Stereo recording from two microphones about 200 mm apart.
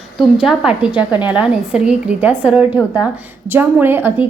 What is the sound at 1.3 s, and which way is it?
A woman's voice, 5° right (ahead or behind).